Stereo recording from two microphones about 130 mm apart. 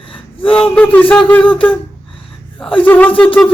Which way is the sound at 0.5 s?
10° left (ahead or behind).